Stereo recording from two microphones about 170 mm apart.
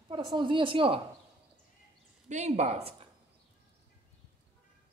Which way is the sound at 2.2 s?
40° right (ahead or behind).